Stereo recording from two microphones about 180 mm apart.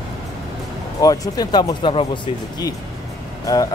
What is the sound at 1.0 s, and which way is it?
A man's voice, 20° left (ahead or behind).